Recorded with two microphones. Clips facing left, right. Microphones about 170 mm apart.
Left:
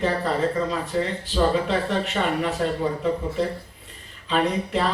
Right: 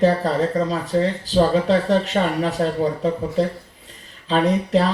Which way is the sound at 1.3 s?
40° right (ahead or behind).